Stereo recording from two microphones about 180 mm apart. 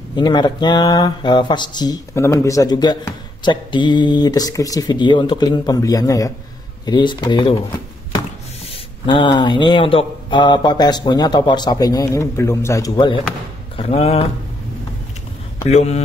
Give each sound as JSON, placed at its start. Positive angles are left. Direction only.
{"t": 0.1, "sound": "speech", "side_deg": 25}
{"t": 9.0, "sound": "speech", "side_deg": 25}
{"t": 13.7, "sound": "speech", "side_deg": 35}
{"t": 15.7, "sound": "speech", "side_deg": 40}